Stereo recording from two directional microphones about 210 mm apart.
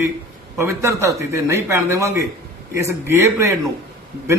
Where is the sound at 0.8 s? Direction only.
15° right (ahead or behind).